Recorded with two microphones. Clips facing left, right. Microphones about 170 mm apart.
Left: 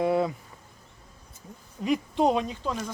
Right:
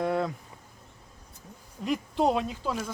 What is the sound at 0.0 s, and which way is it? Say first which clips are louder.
Insect: left 3 dB; 5° left (ahead or behind).